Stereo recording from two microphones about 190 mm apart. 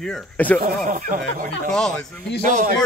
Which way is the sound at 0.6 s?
45° right (ahead or behind).